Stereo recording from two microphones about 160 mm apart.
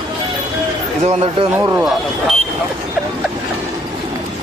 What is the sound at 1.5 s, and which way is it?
Speech, 15° right (ahead or behind).